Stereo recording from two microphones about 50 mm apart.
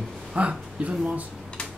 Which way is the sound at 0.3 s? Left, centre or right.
Right.